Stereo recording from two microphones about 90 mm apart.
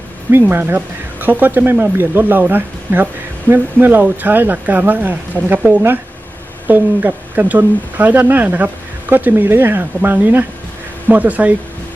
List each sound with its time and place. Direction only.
0.3 s speech: 25° right (ahead or behind)